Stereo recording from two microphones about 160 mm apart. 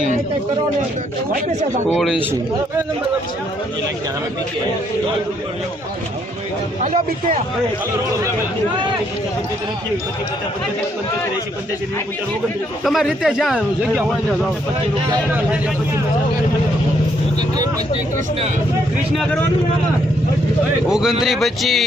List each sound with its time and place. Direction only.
1.9 s speech: centre (ahead or behind)
6.8 s speech: 50° right (ahead or behind)
12.8 s speech: centre (ahead or behind)
19.1 s speech: centre (ahead or behind)
20.8 s speech: 5° right (ahead or behind)